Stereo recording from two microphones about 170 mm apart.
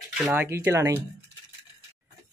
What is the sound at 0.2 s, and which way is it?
Speech, 10° right (ahead or behind).